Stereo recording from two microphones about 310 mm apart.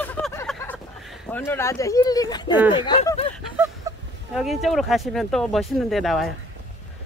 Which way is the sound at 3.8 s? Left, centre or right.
Centre.